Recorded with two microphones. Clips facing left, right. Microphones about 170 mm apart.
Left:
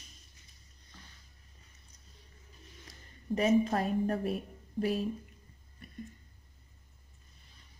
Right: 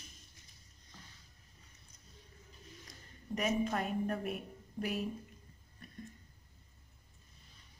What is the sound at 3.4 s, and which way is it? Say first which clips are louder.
A woman's voice: left 6 dB; 35° left (ahead or behind).